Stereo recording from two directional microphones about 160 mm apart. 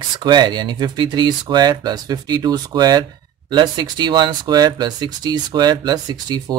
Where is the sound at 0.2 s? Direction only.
30° right (ahead or behind).